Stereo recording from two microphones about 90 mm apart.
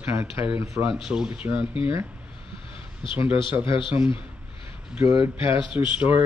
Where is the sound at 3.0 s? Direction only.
75° left (ahead or behind).